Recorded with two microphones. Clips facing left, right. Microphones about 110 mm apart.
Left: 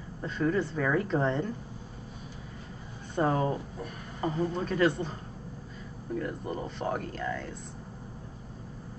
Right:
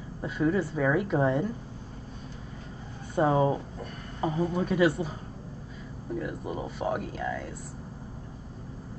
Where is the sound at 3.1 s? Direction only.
10° right (ahead or behind).